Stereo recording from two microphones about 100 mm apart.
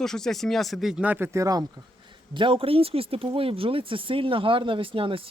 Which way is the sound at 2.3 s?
60° right (ahead or behind).